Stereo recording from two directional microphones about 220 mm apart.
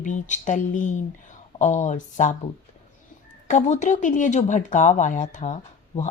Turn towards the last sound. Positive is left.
turn(degrees=35)  # may be behind; listen again after turning